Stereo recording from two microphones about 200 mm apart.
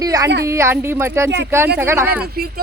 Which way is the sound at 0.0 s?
20° right (ahead or behind).